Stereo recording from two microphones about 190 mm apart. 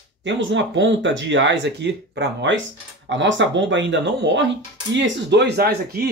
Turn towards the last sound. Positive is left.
turn(degrees=-55)  # may be behind; listen again after turning